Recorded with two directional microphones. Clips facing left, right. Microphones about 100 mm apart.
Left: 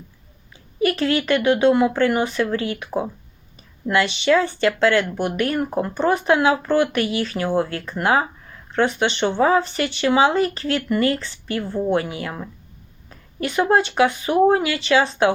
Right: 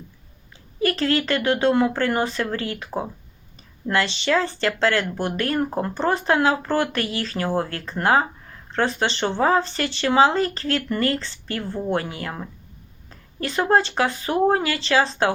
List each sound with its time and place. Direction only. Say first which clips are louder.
0.8 s speech: left 2 dB; 35° right (ahead or behind)
13.4 s speech: left 1 dB; 35° right (ahead or behind)